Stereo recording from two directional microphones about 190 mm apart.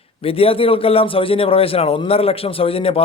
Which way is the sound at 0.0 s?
30° left (ahead or behind).